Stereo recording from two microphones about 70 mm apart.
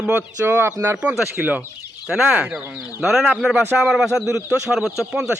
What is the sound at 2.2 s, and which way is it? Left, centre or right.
Speech, centre.